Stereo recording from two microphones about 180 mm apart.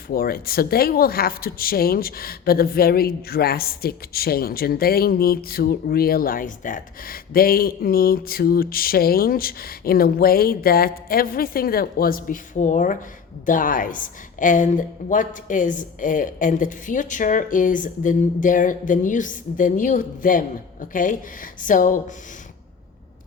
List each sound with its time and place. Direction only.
0.1 s a woman's voice: 55° left (ahead or behind)